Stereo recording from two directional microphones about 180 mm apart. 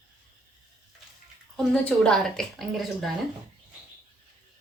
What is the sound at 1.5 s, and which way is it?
A woman's voice, 5° left (ahead or behind).